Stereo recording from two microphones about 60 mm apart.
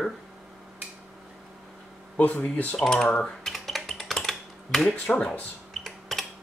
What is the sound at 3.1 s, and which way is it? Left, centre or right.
Computer keyboard, centre.